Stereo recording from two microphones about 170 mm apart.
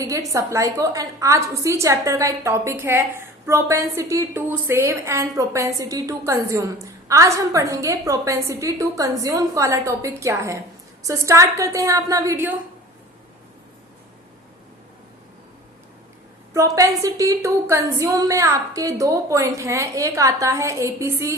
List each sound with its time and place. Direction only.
0.0 s a woman's voice: 20° right (ahead or behind)
16.6 s a woman's voice: 20° right (ahead or behind)